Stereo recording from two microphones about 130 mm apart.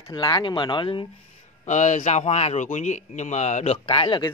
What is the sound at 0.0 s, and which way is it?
Speech, 35° left (ahead or behind).